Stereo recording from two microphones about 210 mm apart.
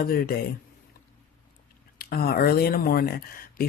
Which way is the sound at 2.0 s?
45° left (ahead or behind).